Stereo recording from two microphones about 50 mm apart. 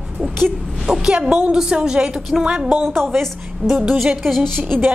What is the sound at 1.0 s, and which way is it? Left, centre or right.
A woman's voice, centre.